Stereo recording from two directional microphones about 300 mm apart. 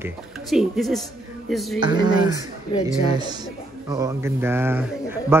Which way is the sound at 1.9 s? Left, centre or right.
Centre.